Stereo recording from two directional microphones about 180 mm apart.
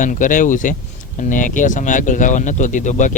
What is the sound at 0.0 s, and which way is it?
Speech, 45° left (ahead or behind).